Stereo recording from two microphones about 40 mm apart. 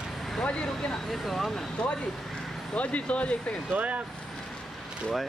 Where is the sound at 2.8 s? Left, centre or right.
Left.